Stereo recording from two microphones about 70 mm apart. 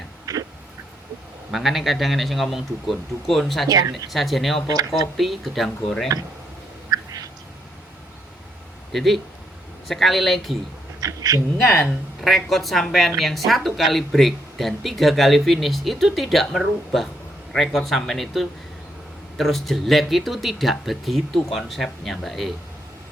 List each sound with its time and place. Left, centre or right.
1.5 s a woman's voice: centre
3.7 s speech: right
4.1 s a woman's voice: centre
6.9 s a sound: right
8.9 s a woman's voice: centre
11.0 s speech: right
11.9 s a woman's voice: centre